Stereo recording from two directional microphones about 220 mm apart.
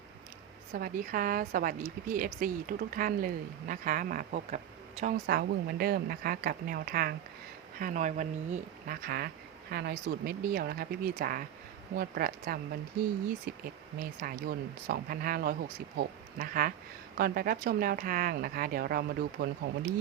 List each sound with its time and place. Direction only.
0.7 s speech: 40° right (ahead or behind)
5.1 s speech: 45° right (ahead or behind)